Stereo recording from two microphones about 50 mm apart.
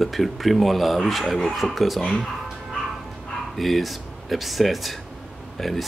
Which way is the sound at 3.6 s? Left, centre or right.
Centre.